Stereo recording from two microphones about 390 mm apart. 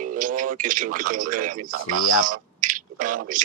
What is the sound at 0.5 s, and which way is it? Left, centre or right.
Speech, centre.